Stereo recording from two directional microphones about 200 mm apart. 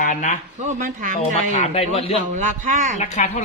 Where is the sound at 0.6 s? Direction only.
40° right (ahead or behind).